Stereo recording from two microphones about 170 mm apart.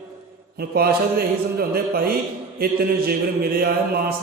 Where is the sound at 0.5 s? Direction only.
65° right (ahead or behind).